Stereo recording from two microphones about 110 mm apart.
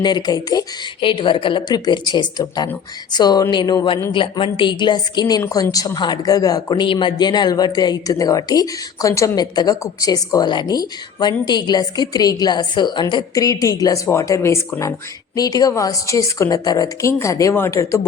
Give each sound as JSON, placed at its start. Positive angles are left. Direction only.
{"t": 0.0, "sound": "speech", "side_deg": 40}
{"t": 1.0, "sound": "a woman's voice", "side_deg": 50}